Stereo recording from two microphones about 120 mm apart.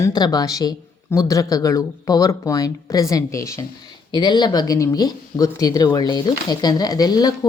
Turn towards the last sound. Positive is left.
turn(degrees=35)  # may be behind; listen again after turning